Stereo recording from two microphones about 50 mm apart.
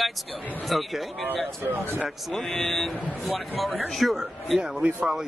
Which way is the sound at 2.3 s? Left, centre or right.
Centre.